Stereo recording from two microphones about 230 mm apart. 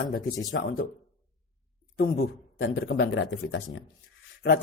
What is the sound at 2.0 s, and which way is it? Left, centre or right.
Speech, left.